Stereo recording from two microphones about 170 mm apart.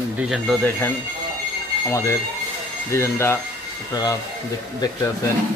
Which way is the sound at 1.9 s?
15° left (ahead or behind).